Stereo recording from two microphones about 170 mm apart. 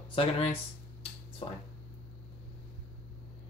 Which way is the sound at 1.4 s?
35° left (ahead or behind).